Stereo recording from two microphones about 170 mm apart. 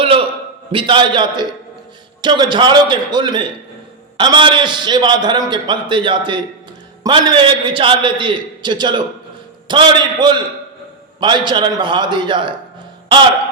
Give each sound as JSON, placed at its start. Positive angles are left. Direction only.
{"t": 0.7, "sound": "a man's voice", "side_deg": -30}